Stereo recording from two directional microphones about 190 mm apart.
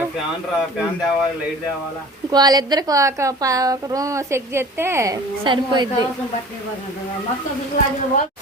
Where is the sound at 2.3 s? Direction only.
20° right (ahead or behind).